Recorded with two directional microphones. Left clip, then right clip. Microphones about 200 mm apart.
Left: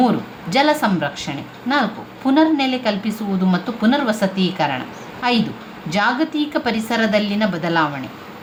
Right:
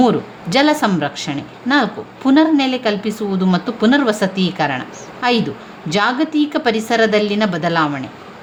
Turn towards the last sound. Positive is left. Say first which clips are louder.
# right 2 dB
turn(degrees=-35)  # may be behind; listen again after turning